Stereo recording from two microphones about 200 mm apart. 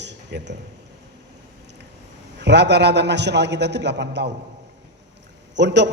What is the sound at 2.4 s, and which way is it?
A man's voice, 60° right (ahead or behind).